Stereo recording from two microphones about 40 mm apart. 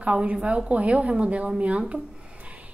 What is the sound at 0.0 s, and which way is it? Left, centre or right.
A woman's voice, right.